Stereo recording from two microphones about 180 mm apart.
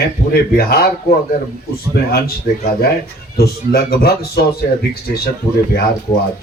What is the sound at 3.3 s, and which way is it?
Speech, 55° left (ahead or behind).